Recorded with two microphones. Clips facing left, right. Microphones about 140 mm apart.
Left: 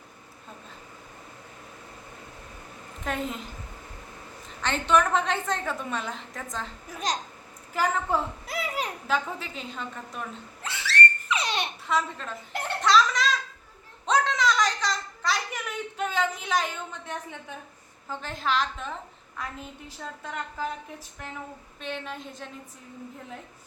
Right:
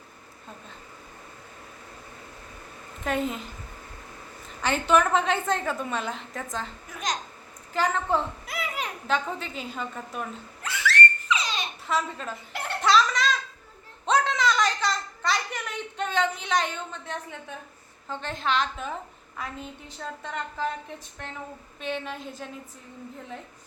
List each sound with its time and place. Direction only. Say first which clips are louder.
3.0 s a woman's voice: right 3 dB; centre (ahead or behind)
4.6 s a woman's voice: right 1 dB; 5° right (ahead or behind)
7.1 s speech: left 1 dB; 35° left (ahead or behind)
7.7 s a woman's voice: right 1 dB; 10° left (ahead or behind)
8.4 s speech: left 2 dB; 35° left (ahead or behind)
9.0 s a woman's voice: right 3 dB; 5° left (ahead or behind)
10.6 s whistling: right 3 dB; 30° left (ahead or behind)
11.2 s a sound: even; 60° left (ahead or behind)
11.9 s a woman's voice: right 1 dB; centre (ahead or behind)
12.8 s a sound: even; centre (ahead or behind)
18.1 s a woman's voice: right 1 dB; 5° left (ahead or behind)